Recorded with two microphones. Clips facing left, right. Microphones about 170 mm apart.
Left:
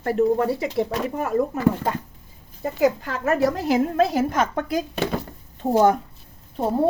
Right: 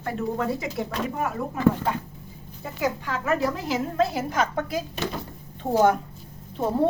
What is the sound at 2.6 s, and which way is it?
Speech, 45° left (ahead or behind).